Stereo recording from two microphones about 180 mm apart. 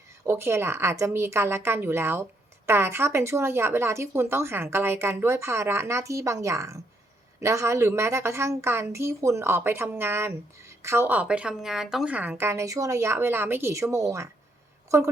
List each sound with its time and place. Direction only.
0.3 s a woman's voice: 15° right (ahead or behind)